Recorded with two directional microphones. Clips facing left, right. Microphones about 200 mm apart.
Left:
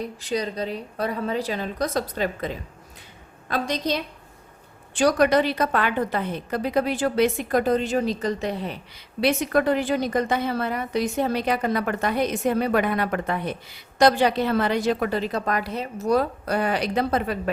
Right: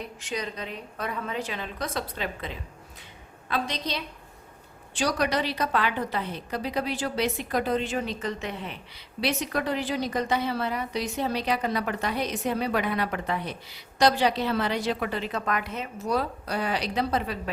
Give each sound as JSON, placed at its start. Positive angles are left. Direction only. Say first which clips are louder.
{"t": 0.0, "sound": "a woman's voice", "louder": "left 6 dB", "side_deg": 35}